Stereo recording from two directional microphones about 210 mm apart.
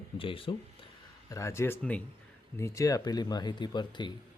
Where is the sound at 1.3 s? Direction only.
15° left (ahead or behind).